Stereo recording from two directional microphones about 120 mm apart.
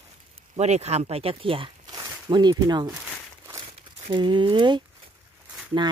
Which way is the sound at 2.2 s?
40° right (ahead or behind).